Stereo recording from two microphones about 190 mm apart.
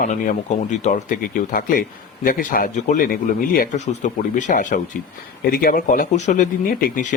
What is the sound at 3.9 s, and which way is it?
Speech, 40° left (ahead or behind).